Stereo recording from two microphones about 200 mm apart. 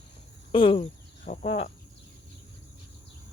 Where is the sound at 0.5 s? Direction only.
25° left (ahead or behind).